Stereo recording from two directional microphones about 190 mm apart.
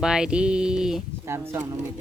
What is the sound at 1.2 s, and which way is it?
Speech, 15° right (ahead or behind).